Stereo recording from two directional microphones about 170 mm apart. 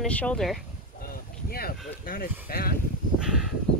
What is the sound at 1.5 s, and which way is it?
Speech, 60° left (ahead or behind).